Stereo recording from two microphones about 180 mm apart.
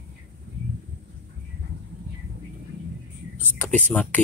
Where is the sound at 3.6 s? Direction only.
5° left (ahead or behind).